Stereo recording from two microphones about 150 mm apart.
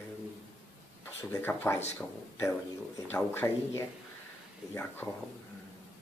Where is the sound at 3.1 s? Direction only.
15° left (ahead or behind).